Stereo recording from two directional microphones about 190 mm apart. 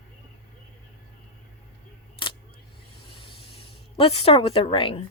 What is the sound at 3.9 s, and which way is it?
Speech, 30° left (ahead or behind).